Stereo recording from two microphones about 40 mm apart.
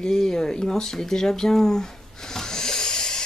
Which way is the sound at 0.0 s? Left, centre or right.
Centre.